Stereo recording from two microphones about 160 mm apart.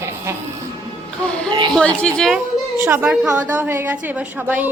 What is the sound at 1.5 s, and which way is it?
Speech, 30° right (ahead or behind).